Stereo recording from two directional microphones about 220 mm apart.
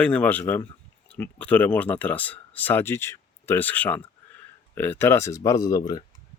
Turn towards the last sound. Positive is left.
turn(degrees=15)  # may be behind; listen again after turning